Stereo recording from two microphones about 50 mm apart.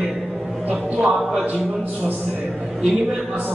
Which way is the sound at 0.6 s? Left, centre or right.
Right.